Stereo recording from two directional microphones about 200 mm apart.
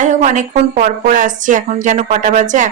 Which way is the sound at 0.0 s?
40° right (ahead or behind).